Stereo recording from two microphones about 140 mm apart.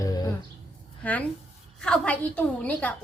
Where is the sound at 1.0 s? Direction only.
10° left (ahead or behind).